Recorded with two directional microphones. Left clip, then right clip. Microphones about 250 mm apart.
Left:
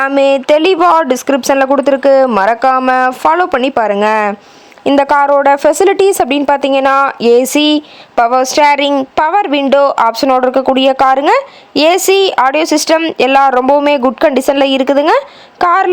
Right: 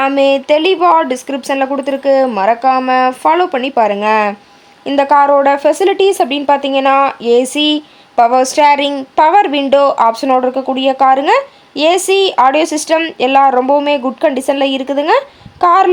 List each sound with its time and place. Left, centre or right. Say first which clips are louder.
0.0 s a woman's voice: left 1 dB; left